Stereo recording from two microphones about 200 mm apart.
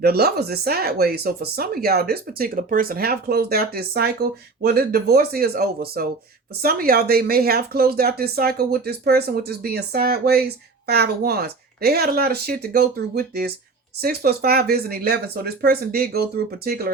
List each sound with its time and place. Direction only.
0.0 s speech: 50° right (ahead or behind)